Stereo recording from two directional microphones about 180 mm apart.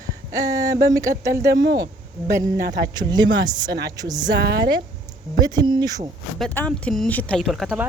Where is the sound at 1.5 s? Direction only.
70° right (ahead or behind).